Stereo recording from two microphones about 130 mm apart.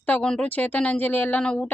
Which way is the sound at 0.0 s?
10° left (ahead or behind).